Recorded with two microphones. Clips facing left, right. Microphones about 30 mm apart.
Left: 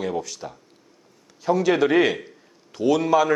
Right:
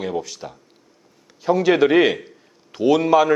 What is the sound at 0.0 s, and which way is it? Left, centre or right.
A man's voice, centre.